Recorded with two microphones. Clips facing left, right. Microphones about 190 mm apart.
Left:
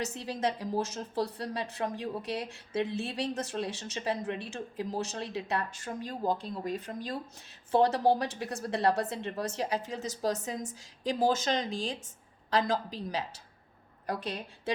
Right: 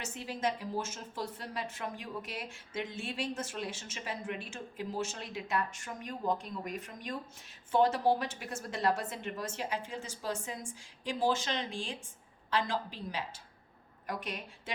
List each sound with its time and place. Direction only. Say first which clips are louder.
0.0 s speech: left 3 dB; 35° left (ahead or behind)